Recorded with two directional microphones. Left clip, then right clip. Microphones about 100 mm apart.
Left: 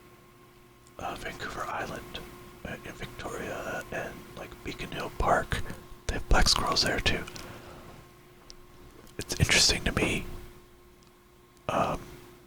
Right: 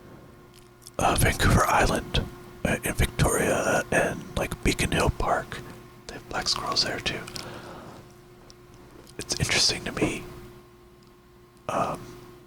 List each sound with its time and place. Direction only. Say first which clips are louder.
0.9 s speech: right 13 dB; 50° right (ahead or behind)
5.1 s speech: even; centre (ahead or behind)
7.3 s whispering: right 6 dB; 15° right (ahead or behind)
9.1 s speech: even; centre (ahead or behind)
11.6 s a sound: right 1 dB; centre (ahead or behind)